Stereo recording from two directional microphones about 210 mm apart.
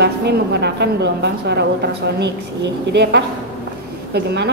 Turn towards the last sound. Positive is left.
turn(degrees=-50)  # may be behind; listen again after turning